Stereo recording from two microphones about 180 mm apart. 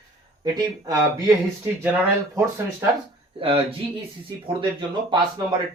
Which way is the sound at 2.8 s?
15° right (ahead or behind).